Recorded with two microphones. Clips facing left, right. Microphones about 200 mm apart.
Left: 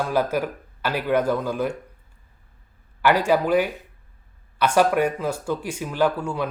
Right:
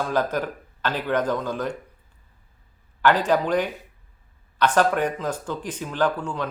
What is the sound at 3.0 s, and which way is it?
Speech, 10° left (ahead or behind).